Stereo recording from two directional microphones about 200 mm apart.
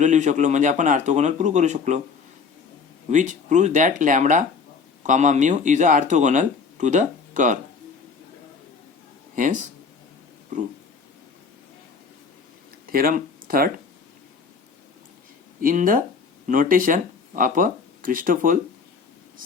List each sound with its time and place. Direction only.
0.0 s speech: 35° right (ahead or behind)
3.1 s speech: 40° right (ahead or behind)
9.3 s speech: 40° right (ahead or behind)
12.9 s speech: 45° right (ahead or behind)
15.6 s speech: 45° right (ahead or behind)